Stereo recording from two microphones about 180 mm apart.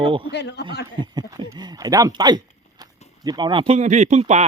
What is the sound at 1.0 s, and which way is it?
Speech, 25° right (ahead or behind).